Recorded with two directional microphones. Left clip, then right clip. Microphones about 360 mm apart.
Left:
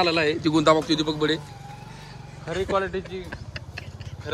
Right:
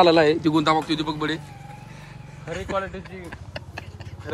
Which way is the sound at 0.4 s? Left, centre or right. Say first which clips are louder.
Left 1 dB; centre.